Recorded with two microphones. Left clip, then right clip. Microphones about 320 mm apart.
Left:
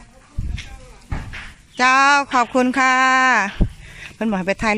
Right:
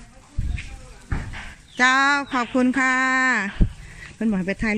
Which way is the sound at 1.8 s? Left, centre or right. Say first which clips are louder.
Left 4 dB; centre.